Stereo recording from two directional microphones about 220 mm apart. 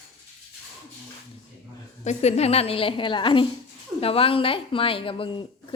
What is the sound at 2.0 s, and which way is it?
A woman's voice, 30° left (ahead or behind).